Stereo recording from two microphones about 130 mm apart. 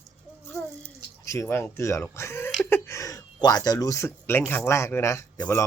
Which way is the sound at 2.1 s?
20° left (ahead or behind).